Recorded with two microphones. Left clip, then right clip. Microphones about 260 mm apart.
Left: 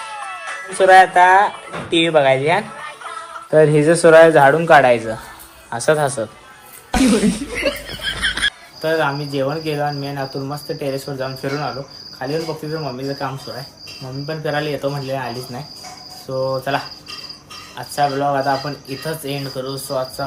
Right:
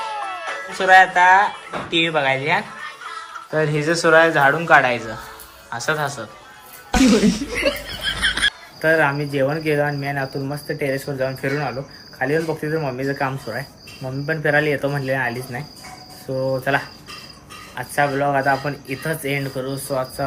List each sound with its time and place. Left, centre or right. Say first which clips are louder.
0.0 s music: right 2 dB; right
0.8 s a man's voice: left 3 dB; centre
2.7 s music: left 2 dB; centre
3.5 s a man's voice: left 8 dB; centre
6.9 s chuckle: even; centre
8.8 s speech: right 1 dB; centre
12.8 s speech: right 2 dB; centre
16.5 s speech: even; centre